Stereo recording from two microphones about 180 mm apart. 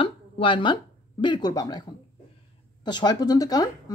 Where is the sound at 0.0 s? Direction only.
30° left (ahead or behind).